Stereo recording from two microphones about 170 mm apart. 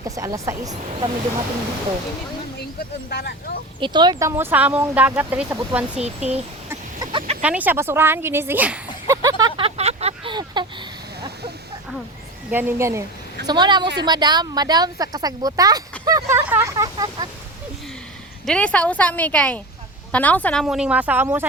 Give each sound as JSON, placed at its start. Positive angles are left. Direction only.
{"t": 0.2, "sound": "speech", "side_deg": -20}
{"t": 3.1, "sound": "speech", "side_deg": 75}
{"t": 3.8, "sound": "speech", "side_deg": -25}
{"t": 6.7, "sound": "a sound", "side_deg": -25}
{"t": 7.4, "sound": "speech", "side_deg": -10}
{"t": 9.0, "sound": "a sound", "side_deg": -20}
{"t": 9.6, "sound": "vehicle", "side_deg": -35}
{"t": 10.3, "sound": "a sound", "side_deg": -25}
{"t": 12.5, "sound": "speech", "side_deg": -10}
{"t": 18.4, "sound": "a woman's voice", "side_deg": 5}